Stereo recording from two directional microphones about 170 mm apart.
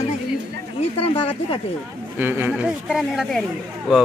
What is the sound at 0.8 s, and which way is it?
Speech, 35° left (ahead or behind).